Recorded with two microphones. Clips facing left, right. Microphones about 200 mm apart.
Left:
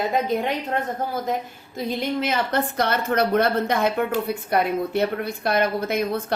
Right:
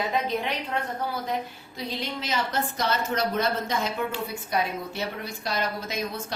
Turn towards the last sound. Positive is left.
turn(degrees=60)  # may be behind; listen again after turning